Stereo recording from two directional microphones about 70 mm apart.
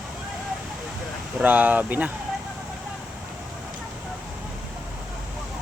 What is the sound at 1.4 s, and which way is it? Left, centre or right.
Speech, right.